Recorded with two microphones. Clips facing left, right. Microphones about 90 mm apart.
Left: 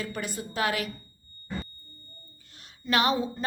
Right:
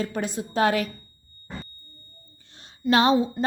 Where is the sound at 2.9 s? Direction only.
25° right (ahead or behind).